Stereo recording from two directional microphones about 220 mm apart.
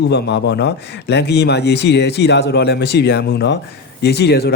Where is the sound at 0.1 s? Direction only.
50° left (ahead or behind).